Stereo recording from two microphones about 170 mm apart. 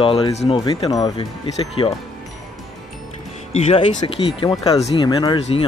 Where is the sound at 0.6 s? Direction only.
25° left (ahead or behind).